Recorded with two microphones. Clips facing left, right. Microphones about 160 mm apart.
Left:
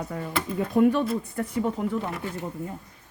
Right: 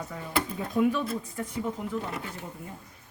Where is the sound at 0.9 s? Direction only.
60° left (ahead or behind).